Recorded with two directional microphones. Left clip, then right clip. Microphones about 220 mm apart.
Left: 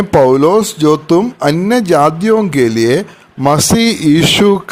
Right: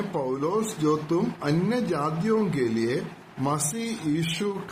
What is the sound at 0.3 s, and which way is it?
A man's voice, 45° left (ahead or behind).